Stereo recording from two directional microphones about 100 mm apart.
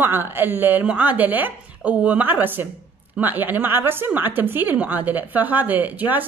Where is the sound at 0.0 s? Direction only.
20° right (ahead or behind).